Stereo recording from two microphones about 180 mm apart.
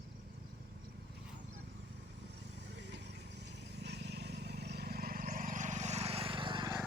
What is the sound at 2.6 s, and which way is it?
Vehicle, 75° right (ahead or behind).